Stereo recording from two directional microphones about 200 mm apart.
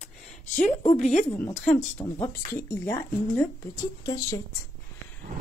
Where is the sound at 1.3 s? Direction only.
10° left (ahead or behind).